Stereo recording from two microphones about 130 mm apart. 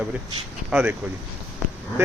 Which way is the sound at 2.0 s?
20° right (ahead or behind).